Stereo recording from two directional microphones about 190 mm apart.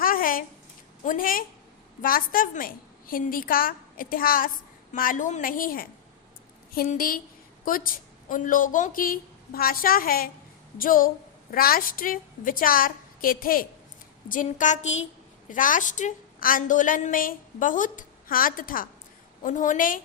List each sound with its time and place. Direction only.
0.0 s a sound: 45° left (ahead or behind)
2.0 s a woman's voice: 50° left (ahead or behind)
8.3 s a woman's voice: 45° left (ahead or behind)